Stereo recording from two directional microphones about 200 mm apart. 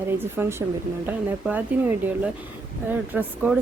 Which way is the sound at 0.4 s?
10° right (ahead or behind).